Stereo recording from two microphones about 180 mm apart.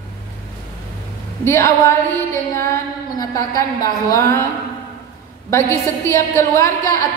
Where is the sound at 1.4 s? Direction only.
15° left (ahead or behind).